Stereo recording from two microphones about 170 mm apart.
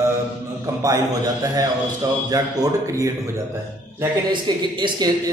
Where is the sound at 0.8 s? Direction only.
20° right (ahead or behind).